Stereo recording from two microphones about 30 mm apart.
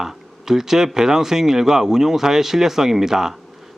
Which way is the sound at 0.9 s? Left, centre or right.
Centre.